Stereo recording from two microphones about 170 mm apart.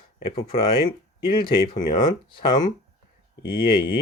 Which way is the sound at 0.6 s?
60° left (ahead or behind).